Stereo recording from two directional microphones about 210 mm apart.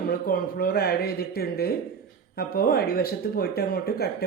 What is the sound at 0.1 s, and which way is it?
A woman's voice, 45° left (ahead or behind).